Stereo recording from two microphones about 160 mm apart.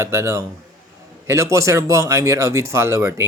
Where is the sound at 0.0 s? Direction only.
15° right (ahead or behind).